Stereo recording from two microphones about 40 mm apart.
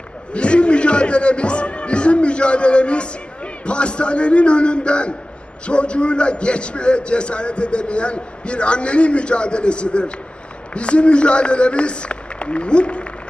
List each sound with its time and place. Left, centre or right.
0.3 s a man's voice: left